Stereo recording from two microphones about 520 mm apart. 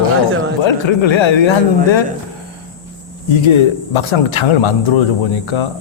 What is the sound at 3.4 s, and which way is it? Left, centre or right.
Speech, left.